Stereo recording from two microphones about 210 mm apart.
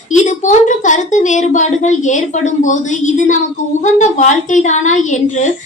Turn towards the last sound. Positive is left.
turn(degrees=35)  # may be behind; listen again after turning